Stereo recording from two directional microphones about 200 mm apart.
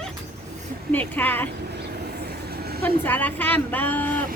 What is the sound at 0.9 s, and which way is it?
Speech, 10° left (ahead or behind).